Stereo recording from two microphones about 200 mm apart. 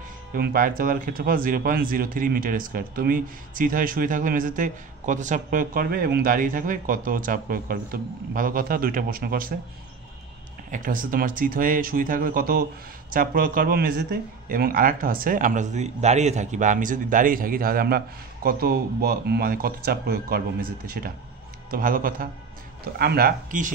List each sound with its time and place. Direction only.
0.3 s speech: 45° right (ahead or behind)
10.7 s speech: 40° right (ahead or behind)